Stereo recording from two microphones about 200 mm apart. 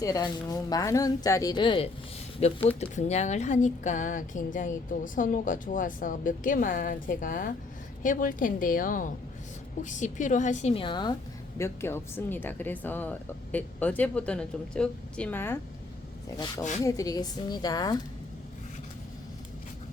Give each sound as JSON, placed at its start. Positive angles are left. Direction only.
{"t": 0.0, "sound": "a woman's voice", "side_deg": 20}
{"t": 16.8, "sound": "a woman's voice", "side_deg": 15}